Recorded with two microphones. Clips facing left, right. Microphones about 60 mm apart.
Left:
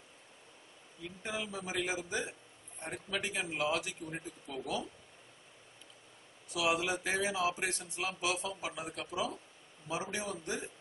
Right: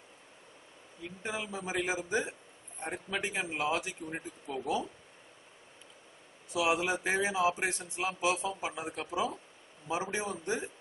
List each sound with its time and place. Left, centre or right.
1.2 s a man's voice: right
6.5 s a man's voice: right